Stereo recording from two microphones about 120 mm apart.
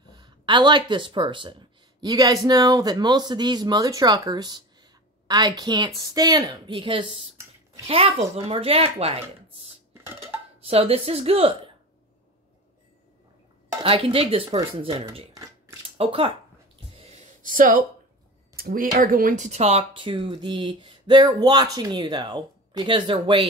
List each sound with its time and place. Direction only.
0.1 s speech: 40° right (ahead or behind)
13.8 s speech: 50° right (ahead or behind)
16.9 s a sound: 65° right (ahead or behind)
19.2 s speech: 90° right; by 19.8 s 65° right (ahead or behind)
19.9 s speech: 45° right (ahead or behind)